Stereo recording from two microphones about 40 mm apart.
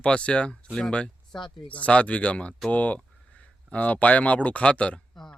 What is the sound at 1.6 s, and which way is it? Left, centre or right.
Speech, left.